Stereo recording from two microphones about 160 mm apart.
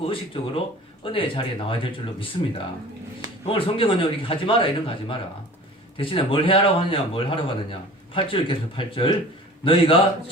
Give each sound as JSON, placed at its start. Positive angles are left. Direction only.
{"t": 0.0, "sound": "speech", "side_deg": 35}
{"t": 3.4, "sound": "speech", "side_deg": 35}